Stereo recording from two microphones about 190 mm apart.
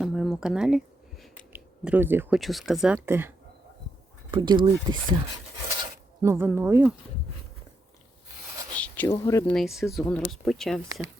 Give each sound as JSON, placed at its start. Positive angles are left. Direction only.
{"t": 0.0, "sound": "a sound", "side_deg": 0}
{"t": 1.5, "sound": "speech", "side_deg": -10}
{"t": 2.4, "sound": "speech", "side_deg": 0}
{"t": 4.3, "sound": "speech", "side_deg": -25}
{"t": 5.6, "sound": "filing", "side_deg": -15}
{"t": 8.7, "sound": "a sound", "side_deg": 10}
{"t": 9.1, "sound": "speech", "side_deg": 15}
{"t": 9.5, "sound": "speech", "side_deg": 0}